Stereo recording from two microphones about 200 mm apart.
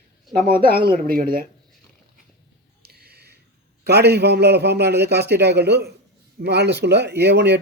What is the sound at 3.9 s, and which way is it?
A man's voice, 55° right (ahead or behind).